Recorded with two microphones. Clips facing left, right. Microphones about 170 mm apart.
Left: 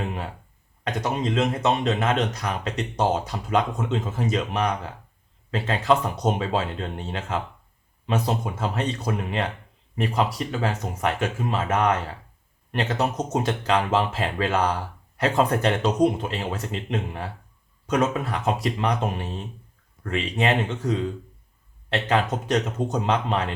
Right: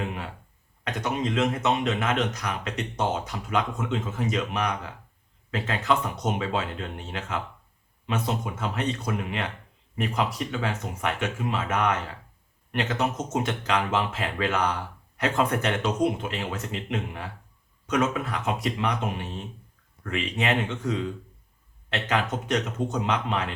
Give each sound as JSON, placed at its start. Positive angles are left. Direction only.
{"t": 1.0, "sound": "speech", "side_deg": 35}